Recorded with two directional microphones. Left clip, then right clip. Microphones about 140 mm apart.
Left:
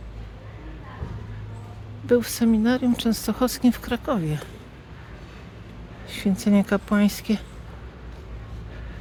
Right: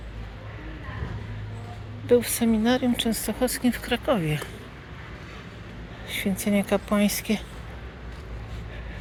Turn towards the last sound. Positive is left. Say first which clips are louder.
# left 1 dB
turn(degrees=55)  # may be behind; listen again after turning